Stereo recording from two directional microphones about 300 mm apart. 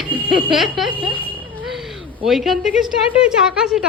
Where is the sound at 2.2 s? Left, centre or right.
Centre.